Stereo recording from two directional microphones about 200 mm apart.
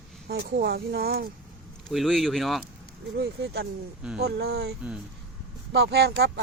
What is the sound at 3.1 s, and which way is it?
Speech, 55° right (ahead or behind).